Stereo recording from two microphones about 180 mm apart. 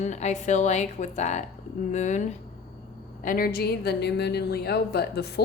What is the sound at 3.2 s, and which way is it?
A woman's voice, 55° left (ahead or behind).